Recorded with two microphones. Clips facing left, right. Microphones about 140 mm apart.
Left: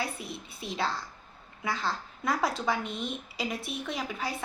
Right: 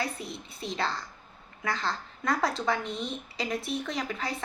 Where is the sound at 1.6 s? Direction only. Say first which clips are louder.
Even; 5° left (ahead or behind).